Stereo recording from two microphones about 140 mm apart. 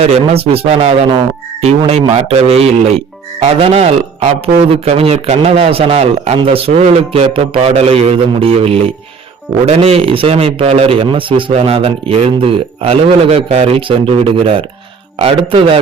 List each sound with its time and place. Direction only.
0.0 s speech: 45° right (ahead or behind)